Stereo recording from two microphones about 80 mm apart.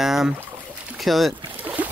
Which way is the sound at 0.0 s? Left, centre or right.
Centre.